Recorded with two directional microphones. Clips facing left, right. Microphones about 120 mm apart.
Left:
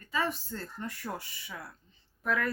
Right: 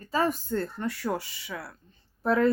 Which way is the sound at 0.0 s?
40° right (ahead or behind).